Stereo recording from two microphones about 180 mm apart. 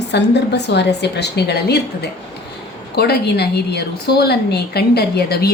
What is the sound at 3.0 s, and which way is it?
A woman's voice, 65° left (ahead or behind).